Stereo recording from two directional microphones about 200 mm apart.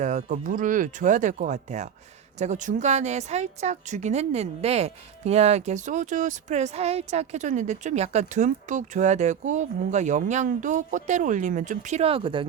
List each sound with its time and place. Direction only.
0.0 s speech: 35° right (ahead or behind)